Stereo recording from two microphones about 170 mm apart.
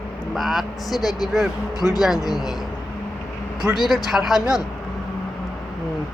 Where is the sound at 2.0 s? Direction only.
Centre (ahead or behind).